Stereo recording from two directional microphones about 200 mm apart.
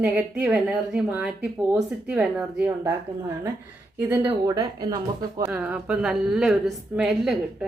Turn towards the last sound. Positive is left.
turn(degrees=0)  # may be behind; listen again after turning